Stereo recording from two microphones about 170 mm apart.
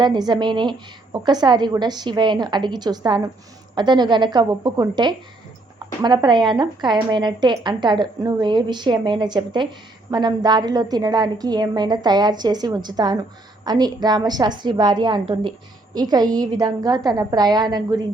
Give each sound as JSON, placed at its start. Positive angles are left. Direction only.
{"t": 0.0, "sound": "a woman's voice", "side_deg": -25}